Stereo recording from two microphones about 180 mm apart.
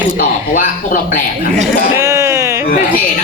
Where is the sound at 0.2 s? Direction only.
50° left (ahead or behind).